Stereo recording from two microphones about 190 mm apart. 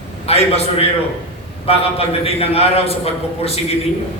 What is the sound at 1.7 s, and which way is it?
A man's voice, 30° left (ahead or behind).